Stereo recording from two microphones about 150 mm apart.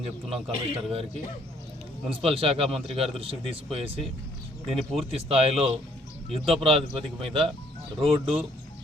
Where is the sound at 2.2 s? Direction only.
40° right (ahead or behind).